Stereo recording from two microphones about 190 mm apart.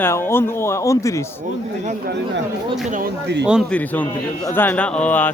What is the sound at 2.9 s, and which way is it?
Speech, 55° right (ahead or behind).